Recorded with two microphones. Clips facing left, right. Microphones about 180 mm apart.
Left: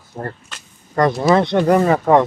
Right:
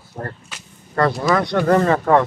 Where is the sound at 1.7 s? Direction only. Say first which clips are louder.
Left 1 dB; 10° left (ahead or behind).